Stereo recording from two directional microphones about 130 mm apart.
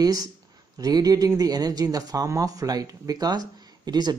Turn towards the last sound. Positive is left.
turn(degrees=-30)  # may be behind; listen again after turning